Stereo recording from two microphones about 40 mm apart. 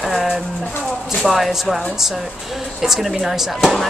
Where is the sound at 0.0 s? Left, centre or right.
Centre.